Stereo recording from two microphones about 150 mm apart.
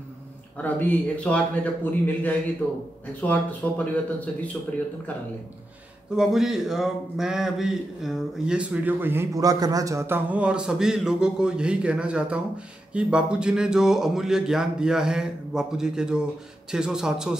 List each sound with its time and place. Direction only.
0.6 s a man's voice: 10° left (ahead or behind)
6.1 s a man's voice: 5° right (ahead or behind)